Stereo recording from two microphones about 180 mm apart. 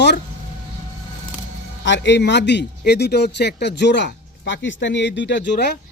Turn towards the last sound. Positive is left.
turn(degrees=75)  # may be behind; listen again after turning